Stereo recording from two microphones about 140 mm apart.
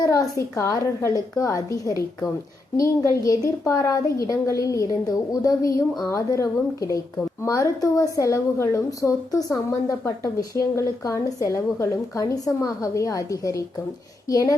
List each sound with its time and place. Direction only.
0.0 s a woman's voice: 25° left (ahead or behind)